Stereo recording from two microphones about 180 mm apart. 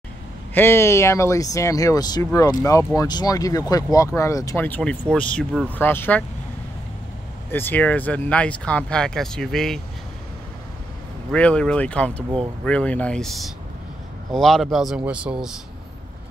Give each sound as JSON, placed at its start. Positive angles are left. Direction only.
{"t": 0.6, "sound": "speech", "side_deg": 15}
{"t": 7.5, "sound": "speech", "side_deg": 10}
{"t": 11.3, "sound": "speech", "side_deg": 5}